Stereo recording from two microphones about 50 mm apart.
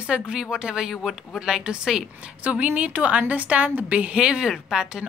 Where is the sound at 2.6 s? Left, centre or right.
Right.